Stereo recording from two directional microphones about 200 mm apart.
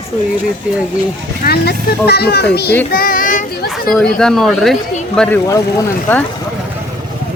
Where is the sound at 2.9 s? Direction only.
45° left (ahead or behind).